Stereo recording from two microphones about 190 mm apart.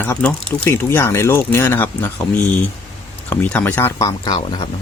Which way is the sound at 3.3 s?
5° left (ahead or behind).